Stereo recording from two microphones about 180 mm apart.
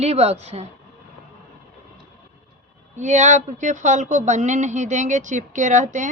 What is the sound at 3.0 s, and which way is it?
A woman's voice, 40° right (ahead or behind).